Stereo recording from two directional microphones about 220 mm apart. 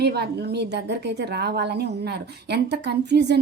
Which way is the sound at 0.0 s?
45° right (ahead or behind).